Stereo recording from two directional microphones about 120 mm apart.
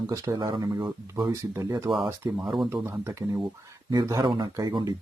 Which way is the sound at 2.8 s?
20° right (ahead or behind).